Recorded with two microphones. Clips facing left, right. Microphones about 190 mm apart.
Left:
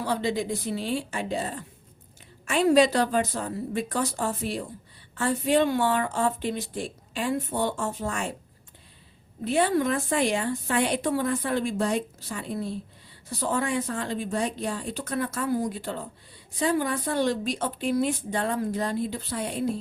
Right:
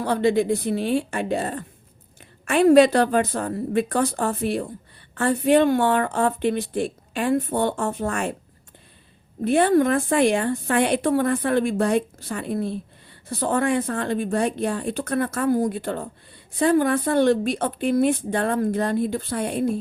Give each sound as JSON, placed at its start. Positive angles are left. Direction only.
{"t": 0.0, "sound": "a woman's voice", "side_deg": -55}
{"t": 9.4, "sound": "a woman's voice", "side_deg": -55}